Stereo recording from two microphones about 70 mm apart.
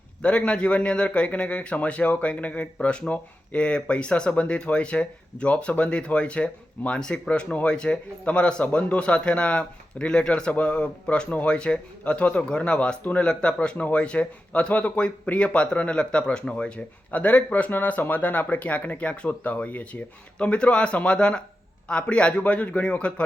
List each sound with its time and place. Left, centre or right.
0.2 s a man's voice: centre